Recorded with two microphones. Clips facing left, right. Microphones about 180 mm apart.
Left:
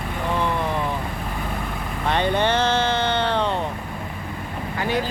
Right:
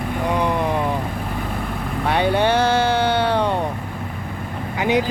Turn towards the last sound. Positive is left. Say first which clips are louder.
# right 5 dB
turn(degrees=-15)  # may be behind; listen again after turning